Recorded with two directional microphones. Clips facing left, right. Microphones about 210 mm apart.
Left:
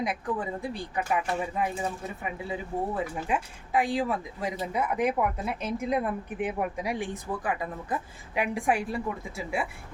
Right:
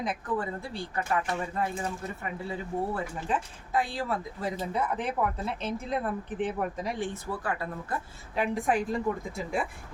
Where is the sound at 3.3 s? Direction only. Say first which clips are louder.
Left 1 dB; 15° left (ahead or behind).